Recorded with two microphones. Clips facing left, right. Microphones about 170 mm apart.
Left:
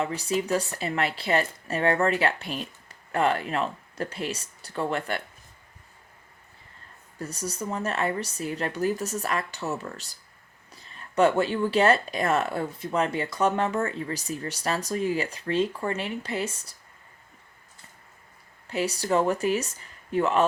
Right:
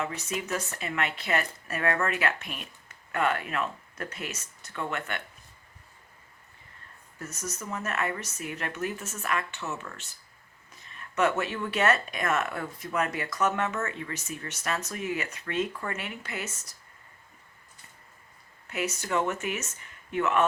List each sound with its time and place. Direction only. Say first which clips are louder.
0.0 s speech: left 6 dB; 35° left (ahead or behind)
7.2 s speech: left 5 dB; 35° left (ahead or behind)
18.7 s speech: left 5 dB; 30° left (ahead or behind)